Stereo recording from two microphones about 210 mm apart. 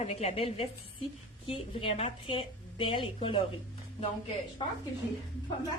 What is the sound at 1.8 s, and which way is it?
A woman's voice, 25° left (ahead or behind).